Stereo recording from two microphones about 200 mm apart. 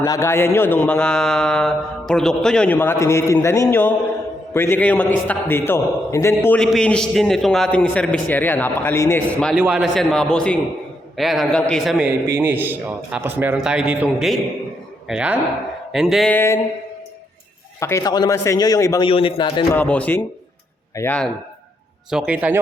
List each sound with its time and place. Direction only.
0.0 s a man's voice: 15° left (ahead or behind); by 16.3 s centre (ahead or behind)
16.3 s a man's voice: 10° left (ahead or behind)
17.7 s a man's voice: 15° left (ahead or behind)
19.7 s a man's voice: 5° left (ahead or behind)
22.1 s a man's voice: 5° right (ahead or behind)